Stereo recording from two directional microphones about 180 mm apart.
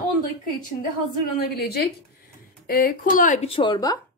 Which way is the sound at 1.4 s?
60° left (ahead or behind).